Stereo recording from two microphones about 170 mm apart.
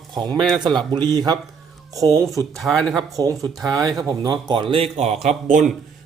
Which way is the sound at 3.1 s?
20° right (ahead or behind).